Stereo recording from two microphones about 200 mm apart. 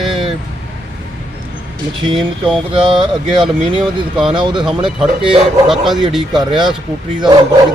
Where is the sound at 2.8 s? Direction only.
25° right (ahead or behind).